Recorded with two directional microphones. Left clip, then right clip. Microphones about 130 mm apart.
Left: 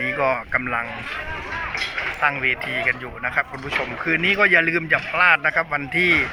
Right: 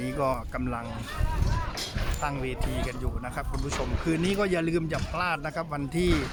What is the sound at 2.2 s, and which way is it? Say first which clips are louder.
Speech: left 12 dB; 20° right (ahead or behind).